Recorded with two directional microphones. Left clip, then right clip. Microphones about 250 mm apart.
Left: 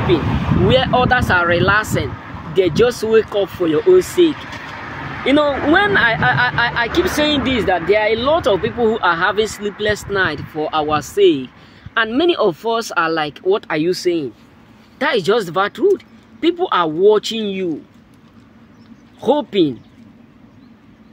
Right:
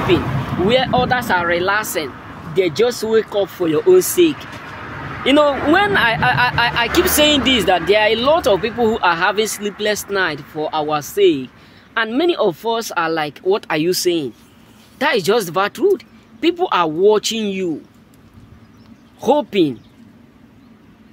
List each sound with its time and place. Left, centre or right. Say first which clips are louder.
0.1 s speech: left 1 dB; centre
2.1 s a sound: left 2 dB; left
2.5 s speech: left 2 dB; centre
4.4 s vehicle: left 2 dB; left
5.2 s speech: right 1 dB; centre
19.1 s speech: even; centre